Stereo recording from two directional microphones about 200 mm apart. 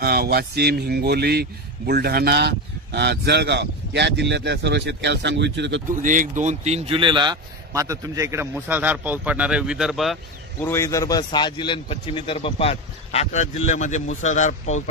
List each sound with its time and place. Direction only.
0.0 s speech: 50° right (ahead or behind)
6.0 s speech: 40° right (ahead or behind); by 10.1 s centre (ahead or behind)
10.6 s a man's voice: 15° left (ahead or behind); by 14.8 s 35° left (ahead or behind)